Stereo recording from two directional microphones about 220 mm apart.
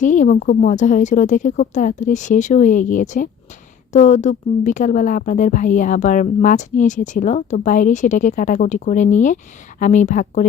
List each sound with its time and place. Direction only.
0.0 s a woman's voice: 35° left (ahead or behind)